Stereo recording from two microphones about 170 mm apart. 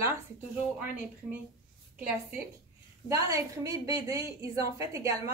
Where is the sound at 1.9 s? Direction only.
10° right (ahead or behind).